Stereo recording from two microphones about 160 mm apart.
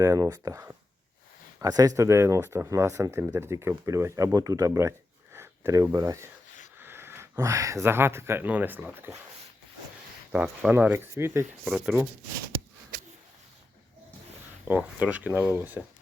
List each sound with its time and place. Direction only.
0.0 s speech: 20° right (ahead or behind)
10.3 s speech: 10° right (ahead or behind)
14.6 s speech: 10° right (ahead or behind)